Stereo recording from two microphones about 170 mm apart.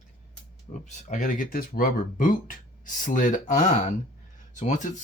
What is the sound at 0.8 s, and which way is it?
Speech, 45° left (ahead or behind).